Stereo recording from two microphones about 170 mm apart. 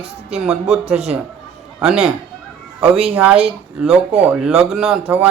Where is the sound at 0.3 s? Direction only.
5° right (ahead or behind).